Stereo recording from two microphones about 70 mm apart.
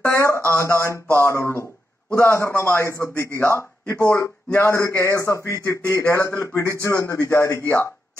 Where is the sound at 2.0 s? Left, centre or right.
Left.